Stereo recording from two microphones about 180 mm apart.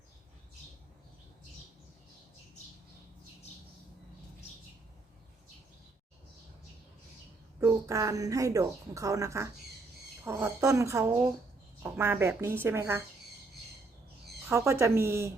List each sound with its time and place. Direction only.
7.6 s a woman's voice: 15° right (ahead or behind)
14.4 s a woman's voice: 15° right (ahead or behind)